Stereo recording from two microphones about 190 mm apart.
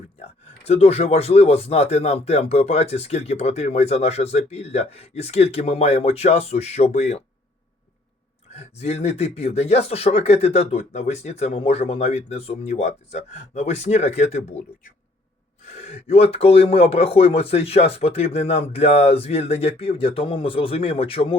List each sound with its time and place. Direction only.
0.6 s speech: 35° left (ahead or behind)
8.4 s speech: 35° left (ahead or behind)
15.6 s speech: 35° left (ahead or behind)